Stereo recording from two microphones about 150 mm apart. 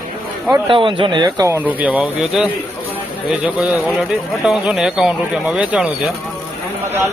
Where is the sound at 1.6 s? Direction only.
10° right (ahead or behind).